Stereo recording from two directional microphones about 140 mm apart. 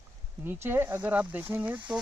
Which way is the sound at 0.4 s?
15° right (ahead or behind).